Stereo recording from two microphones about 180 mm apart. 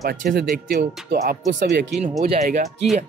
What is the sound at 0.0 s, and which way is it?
Speech, 55° right (ahead or behind).